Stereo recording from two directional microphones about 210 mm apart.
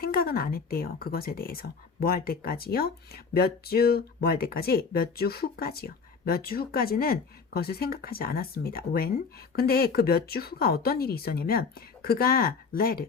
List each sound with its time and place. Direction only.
0.0 s speech: 45° left (ahead or behind)